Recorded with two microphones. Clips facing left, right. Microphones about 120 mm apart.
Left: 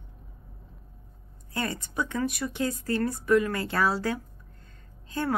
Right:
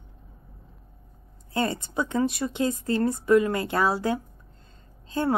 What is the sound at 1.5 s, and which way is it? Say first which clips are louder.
Speech: right 5 dB; 25° right (ahead or behind).